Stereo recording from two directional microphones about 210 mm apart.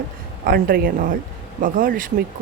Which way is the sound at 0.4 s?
45° right (ahead or behind).